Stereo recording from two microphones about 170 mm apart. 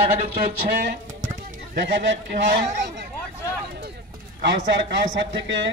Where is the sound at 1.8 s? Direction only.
85° right.